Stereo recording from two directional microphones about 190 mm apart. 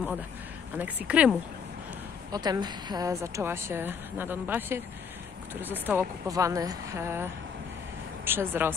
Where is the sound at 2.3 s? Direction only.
20° right (ahead or behind).